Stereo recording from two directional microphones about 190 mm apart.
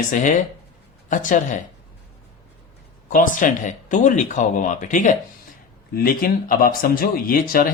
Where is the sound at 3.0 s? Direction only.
45° left (ahead or behind).